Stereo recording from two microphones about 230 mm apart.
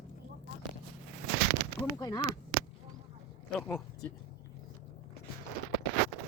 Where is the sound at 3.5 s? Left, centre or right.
Centre.